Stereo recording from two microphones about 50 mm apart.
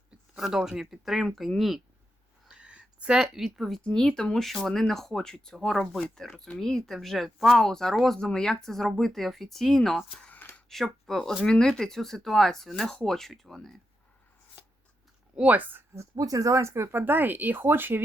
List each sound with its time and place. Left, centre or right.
0.3 s speech: centre
2.5 s a sound: right; by 3.8 s centre
3.8 s speech: centre
7.6 s speech: centre
10.4 s a sound: left
10.8 s speech: centre
15.4 s a woman's voice: right
16.5 s speech: right
16.9 s speech: right